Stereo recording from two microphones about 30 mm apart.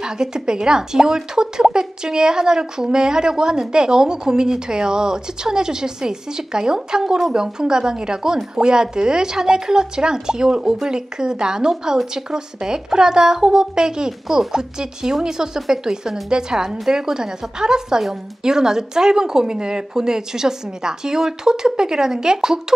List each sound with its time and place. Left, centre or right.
0.0 s speech: right